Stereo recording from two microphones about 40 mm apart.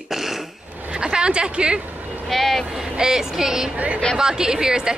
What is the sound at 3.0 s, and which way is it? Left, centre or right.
A woman's voice, centre.